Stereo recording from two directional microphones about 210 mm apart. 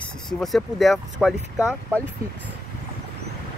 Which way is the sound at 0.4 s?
Centre (ahead or behind).